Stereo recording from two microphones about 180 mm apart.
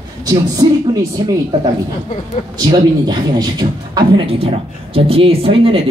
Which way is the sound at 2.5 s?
25° right (ahead or behind).